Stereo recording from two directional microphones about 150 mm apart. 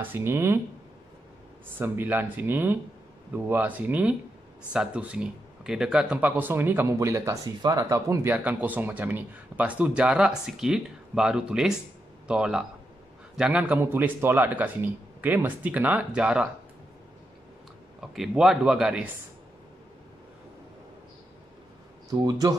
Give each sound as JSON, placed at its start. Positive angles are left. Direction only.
{"t": 0.0, "sound": "speech", "side_deg": -15}
{"t": 1.8, "sound": "speech", "side_deg": -15}
{"t": 18.1, "sound": "speech", "side_deg": 0}
{"t": 22.1, "sound": "speech", "side_deg": -25}